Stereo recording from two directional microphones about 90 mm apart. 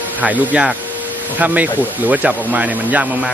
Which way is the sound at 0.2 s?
15° right (ahead or behind).